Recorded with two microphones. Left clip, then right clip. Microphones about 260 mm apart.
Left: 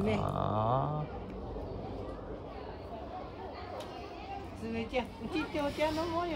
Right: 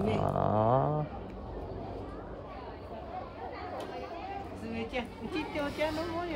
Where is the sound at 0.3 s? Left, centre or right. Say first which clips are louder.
Right 4 dB; right.